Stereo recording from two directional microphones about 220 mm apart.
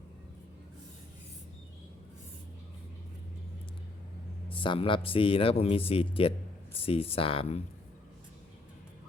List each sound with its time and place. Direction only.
4.4 s speech: 25° left (ahead or behind)